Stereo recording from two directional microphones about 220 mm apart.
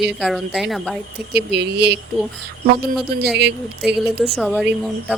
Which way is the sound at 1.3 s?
50° right (ahead or behind).